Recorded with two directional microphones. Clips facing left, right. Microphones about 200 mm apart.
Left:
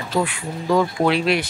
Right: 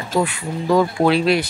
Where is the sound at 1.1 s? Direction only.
35° right (ahead or behind).